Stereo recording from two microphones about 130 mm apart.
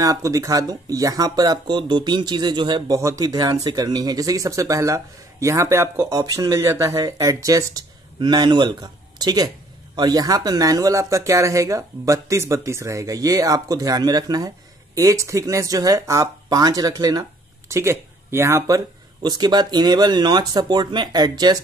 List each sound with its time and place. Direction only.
0.0 s speech: 25° right (ahead or behind)
19.2 s speech: 35° right (ahead or behind)